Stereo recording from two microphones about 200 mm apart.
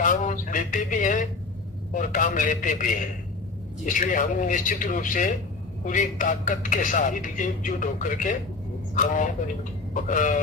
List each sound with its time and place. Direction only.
0.0 s speech: 40° left (ahead or behind)